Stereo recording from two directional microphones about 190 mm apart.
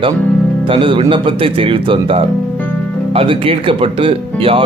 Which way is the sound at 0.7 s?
25° right (ahead or behind).